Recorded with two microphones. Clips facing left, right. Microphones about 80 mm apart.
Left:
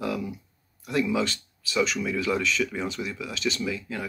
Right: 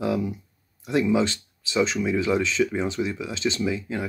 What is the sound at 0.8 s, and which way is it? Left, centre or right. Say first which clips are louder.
Speech: right 4 dB; right.